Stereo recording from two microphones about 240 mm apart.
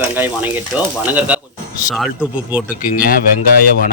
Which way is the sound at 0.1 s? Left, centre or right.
Centre.